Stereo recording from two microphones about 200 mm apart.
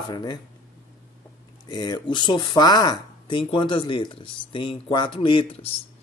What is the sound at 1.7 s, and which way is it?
Speech, 20° left (ahead or behind).